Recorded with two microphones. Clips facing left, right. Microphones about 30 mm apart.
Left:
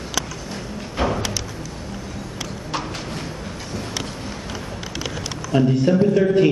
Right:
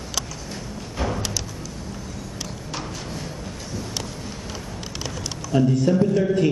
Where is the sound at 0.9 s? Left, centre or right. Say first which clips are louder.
Left 5 dB; left.